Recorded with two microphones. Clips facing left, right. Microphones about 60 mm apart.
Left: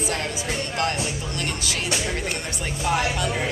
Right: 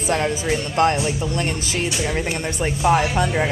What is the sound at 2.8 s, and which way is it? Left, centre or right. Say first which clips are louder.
Speech: right 5 dB; right.